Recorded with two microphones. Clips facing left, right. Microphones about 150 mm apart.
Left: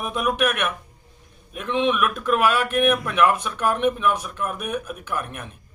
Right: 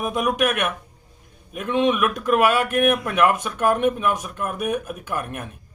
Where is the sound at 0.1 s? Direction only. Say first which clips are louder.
Even; 45° right (ahead or behind).